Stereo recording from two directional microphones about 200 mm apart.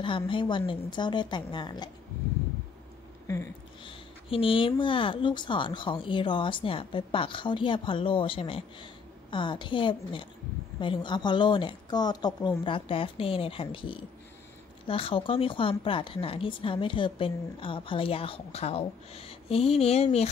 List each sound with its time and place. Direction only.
0.0 s speech: 25° left (ahead or behind)
3.8 s speech: 25° left (ahead or behind)